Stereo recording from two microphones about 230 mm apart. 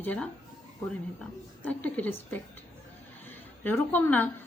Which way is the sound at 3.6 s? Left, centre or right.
Centre.